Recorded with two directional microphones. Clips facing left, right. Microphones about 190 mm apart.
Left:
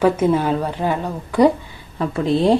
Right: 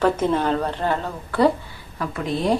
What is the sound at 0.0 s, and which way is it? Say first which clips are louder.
A woman's voice: left 3 dB; 10° left (ahead or behind).